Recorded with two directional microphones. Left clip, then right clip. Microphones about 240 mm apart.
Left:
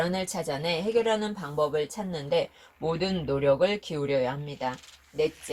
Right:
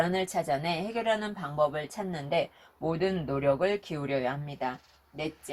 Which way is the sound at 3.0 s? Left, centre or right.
Left.